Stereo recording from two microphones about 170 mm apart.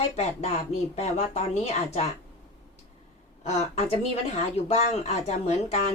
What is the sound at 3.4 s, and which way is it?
Speech, 35° left (ahead or behind).